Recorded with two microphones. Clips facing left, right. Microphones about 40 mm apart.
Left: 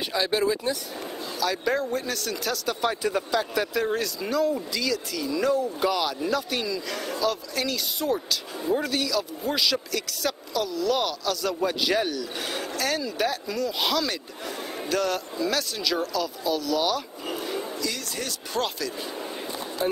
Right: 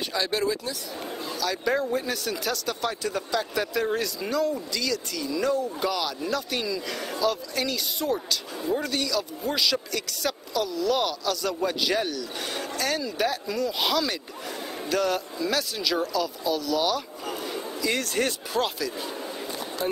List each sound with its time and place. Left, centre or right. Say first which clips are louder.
0.1 s speech: left 3 dB; centre
17.9 s speech: right 7 dB; right
18.5 s speech: right 1 dB; centre
19.8 s speech: left 2 dB; centre